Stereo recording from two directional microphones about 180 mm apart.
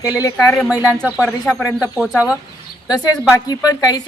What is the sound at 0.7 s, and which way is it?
Speech, 10° right (ahead or behind).